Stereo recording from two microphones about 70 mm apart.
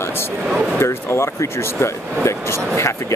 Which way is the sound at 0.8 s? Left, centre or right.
Left.